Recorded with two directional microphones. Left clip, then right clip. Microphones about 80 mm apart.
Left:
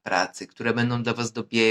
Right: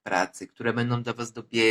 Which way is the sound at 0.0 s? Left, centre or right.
Left.